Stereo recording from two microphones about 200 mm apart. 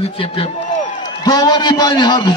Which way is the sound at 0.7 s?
40° left (ahead or behind).